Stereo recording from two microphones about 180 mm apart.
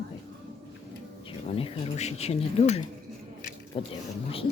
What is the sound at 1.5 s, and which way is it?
A woman's voice, 30° left (ahead or behind).